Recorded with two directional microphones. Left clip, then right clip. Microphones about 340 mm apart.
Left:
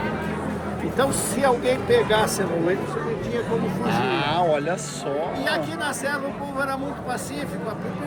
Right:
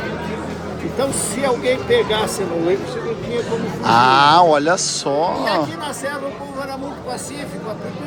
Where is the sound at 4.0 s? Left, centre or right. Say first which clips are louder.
Right 13 dB; centre.